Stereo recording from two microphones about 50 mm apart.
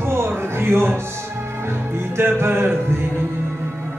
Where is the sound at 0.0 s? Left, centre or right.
Right.